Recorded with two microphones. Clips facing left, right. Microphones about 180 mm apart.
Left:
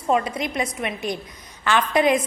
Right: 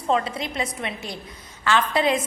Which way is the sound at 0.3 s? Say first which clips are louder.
Left 3 dB; 15° left (ahead or behind).